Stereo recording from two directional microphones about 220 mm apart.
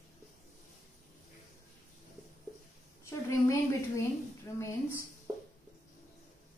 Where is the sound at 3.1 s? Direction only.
15° left (ahead or behind).